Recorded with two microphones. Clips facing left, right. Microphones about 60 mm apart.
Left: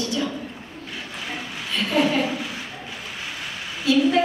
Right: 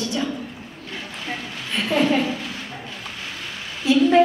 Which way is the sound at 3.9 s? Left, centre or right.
Right.